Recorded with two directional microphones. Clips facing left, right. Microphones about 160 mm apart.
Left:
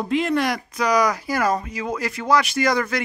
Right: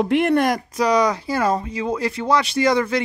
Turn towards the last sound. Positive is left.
turn(degrees=-25)  # may be behind; listen again after turning